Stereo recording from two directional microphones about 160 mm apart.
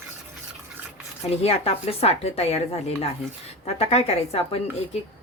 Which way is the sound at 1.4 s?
40° left (ahead or behind).